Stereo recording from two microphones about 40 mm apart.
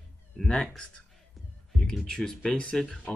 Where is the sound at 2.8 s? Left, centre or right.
Left.